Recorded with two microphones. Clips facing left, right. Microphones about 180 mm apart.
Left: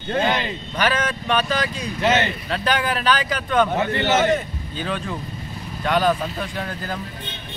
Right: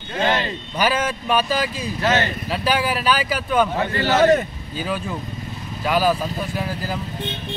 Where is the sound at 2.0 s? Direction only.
20° left (ahead or behind).